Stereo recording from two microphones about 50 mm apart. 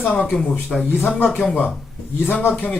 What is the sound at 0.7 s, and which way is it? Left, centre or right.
Speech, centre.